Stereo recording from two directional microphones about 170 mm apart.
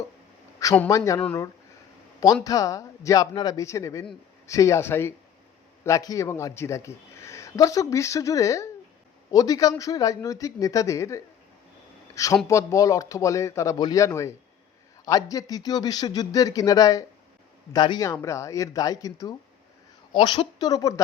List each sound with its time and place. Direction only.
0.6 s speech: 20° left (ahead or behind)
2.2 s a man's voice: 20° left (ahead or behind)